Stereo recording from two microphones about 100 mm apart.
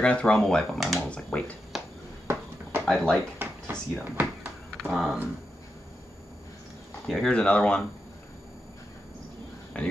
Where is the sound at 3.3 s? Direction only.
20° right (ahead or behind).